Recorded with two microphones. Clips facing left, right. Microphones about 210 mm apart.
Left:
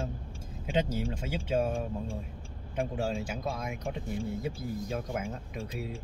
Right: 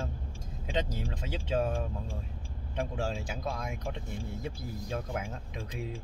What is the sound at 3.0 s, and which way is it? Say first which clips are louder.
Speech: left 2 dB; 5° left (ahead or behind).